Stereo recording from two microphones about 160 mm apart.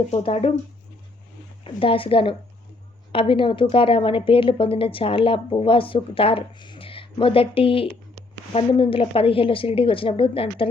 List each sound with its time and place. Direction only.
0.1 s a woman's voice: 40° left (ahead or behind)
1.6 s a woman's voice: 35° left (ahead or behind)